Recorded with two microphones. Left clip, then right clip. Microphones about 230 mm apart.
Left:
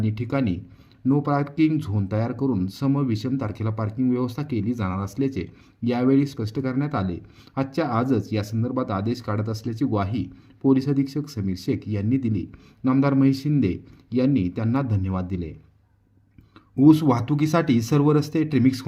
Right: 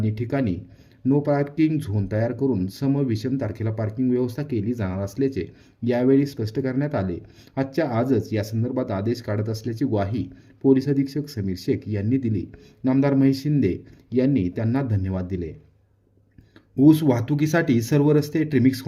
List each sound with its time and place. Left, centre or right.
0.0 s speech: centre
16.7 s speech: centre